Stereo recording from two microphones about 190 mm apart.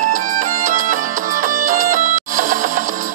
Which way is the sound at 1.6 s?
45° right (ahead or behind).